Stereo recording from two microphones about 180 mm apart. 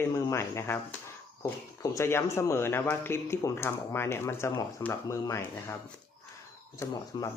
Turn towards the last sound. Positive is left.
turn(degrees=20)  # may be behind; listen again after turning